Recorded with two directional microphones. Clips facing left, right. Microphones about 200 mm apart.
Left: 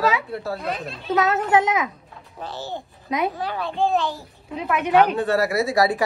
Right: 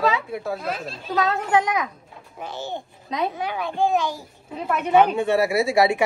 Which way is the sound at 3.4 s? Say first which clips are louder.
Even; 15° right (ahead or behind).